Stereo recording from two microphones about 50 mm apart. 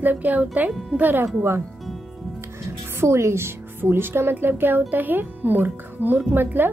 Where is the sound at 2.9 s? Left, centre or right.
Right.